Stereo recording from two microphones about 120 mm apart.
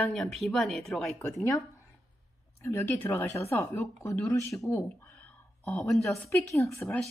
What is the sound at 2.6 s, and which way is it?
Speech, 20° left (ahead or behind).